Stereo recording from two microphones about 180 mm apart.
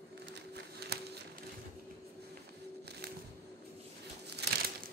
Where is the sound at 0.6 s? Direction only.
65° right (ahead or behind).